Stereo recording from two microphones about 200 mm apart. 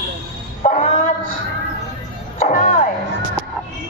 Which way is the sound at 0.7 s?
35° left (ahead or behind).